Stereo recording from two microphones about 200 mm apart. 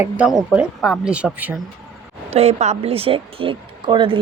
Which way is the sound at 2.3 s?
30° right (ahead or behind).